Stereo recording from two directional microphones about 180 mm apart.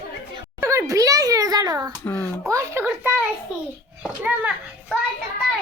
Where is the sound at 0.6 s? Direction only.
15° right (ahead or behind).